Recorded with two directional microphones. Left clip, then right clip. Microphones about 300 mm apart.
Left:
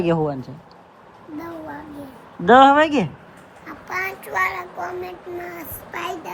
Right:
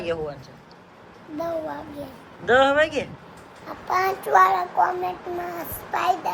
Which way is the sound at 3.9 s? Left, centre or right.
Centre.